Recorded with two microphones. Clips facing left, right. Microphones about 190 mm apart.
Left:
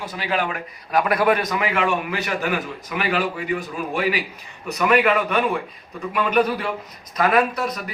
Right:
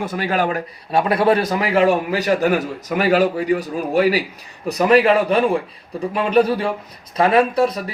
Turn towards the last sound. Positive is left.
turn(degrees=-30)  # may be behind; listen again after turning